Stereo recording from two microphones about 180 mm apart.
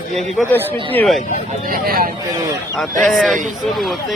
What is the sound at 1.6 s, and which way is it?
Speech, 55° right (ahead or behind).